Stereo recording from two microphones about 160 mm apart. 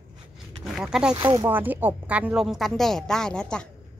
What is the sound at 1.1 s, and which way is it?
Speech, 25° right (ahead or behind).